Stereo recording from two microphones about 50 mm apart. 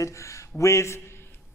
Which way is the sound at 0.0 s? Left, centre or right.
Left.